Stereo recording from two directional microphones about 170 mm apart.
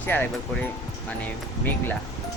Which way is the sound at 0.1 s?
10° left (ahead or behind).